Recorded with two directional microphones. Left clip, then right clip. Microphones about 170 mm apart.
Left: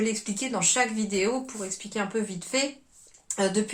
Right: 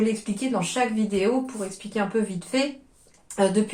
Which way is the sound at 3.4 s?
20° left (ahead or behind).